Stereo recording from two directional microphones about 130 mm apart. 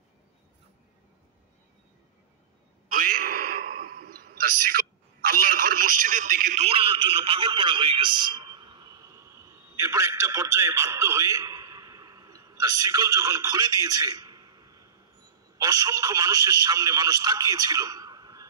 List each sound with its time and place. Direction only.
2.9 s a sound: 90° right
5.2 s telephone: 90° right
6.6 s a man's voice: 45° right (ahead or behind); by 18.5 s 30° right (ahead or behind)